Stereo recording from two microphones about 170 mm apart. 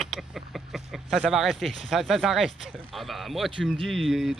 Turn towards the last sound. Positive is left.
turn(degrees=0)  # may be behind; listen again after turning